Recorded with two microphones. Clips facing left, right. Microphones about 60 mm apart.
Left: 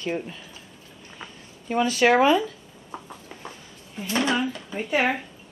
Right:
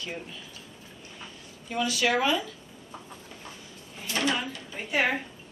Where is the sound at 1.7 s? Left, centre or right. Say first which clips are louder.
Left 7 dB; left.